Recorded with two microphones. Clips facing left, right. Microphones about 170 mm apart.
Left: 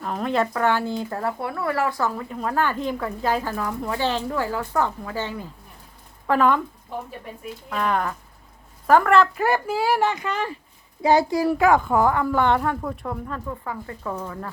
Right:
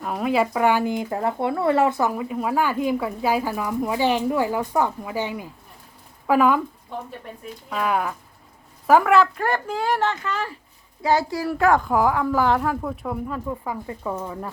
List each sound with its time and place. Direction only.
0.0 s speech: 5° right (ahead or behind)
7.7 s speech: 5° right (ahead or behind); by 11.5 s 20° left (ahead or behind)
11.5 s speech: 5° left (ahead or behind); by 14.5 s 10° right (ahead or behind)